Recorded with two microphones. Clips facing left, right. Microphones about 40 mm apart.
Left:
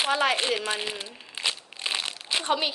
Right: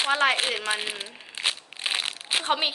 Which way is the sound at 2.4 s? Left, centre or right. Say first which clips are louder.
Even; right.